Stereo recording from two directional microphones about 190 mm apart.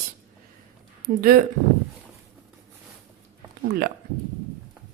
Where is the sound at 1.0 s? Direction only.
50° right (ahead or behind).